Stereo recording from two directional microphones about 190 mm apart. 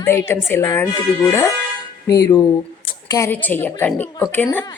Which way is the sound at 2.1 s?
15° left (ahead or behind).